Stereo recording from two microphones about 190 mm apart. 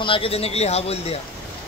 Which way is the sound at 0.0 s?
30° left (ahead or behind).